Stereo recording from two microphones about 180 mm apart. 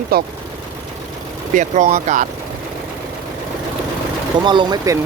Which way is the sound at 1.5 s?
45° right (ahead or behind).